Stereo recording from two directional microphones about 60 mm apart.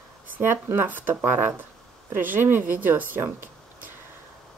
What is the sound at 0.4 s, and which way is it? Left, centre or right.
Speech, right.